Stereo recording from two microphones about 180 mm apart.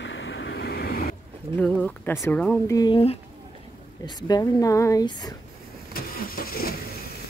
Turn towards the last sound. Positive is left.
turn(degrees=55)  # may be behind; listen again after turning